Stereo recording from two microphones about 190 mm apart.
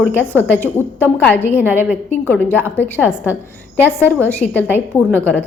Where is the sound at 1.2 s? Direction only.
10° left (ahead or behind).